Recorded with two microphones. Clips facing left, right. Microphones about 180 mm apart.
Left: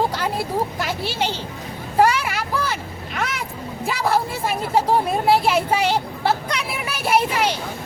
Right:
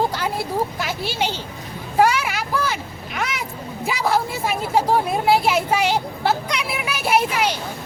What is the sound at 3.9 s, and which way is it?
Speech, 5° right (ahead or behind).